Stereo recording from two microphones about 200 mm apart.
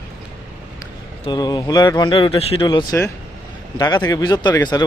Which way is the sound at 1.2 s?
20° left (ahead or behind).